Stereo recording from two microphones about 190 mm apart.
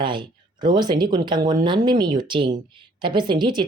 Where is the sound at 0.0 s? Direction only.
25° right (ahead or behind).